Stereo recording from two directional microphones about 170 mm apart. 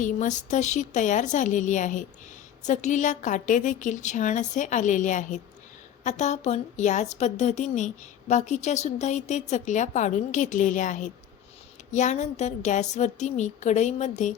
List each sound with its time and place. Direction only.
0.0 s a woman's voice: 50° left (ahead or behind)